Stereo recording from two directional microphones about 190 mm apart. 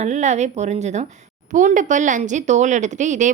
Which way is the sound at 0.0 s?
40° right (ahead or behind).